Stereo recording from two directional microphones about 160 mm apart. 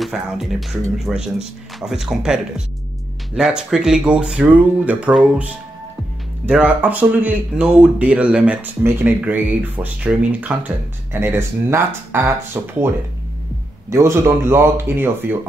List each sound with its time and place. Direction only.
0.0 s speech: centre (ahead or behind)
13.8 s speech: 20° right (ahead or behind)